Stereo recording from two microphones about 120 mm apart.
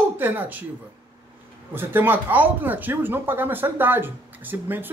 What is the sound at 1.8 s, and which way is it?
Speech, 15° right (ahead or behind).